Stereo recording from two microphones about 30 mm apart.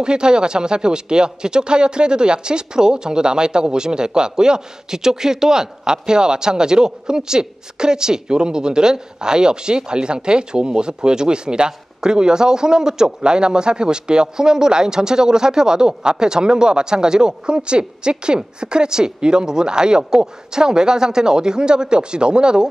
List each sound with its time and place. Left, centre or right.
0.0 s speech: right